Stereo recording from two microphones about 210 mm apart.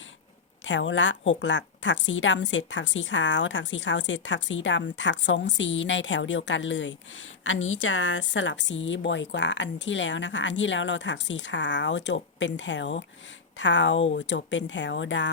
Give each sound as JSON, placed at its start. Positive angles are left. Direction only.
{"t": 0.6, "sound": "a woman's voice", "side_deg": 60}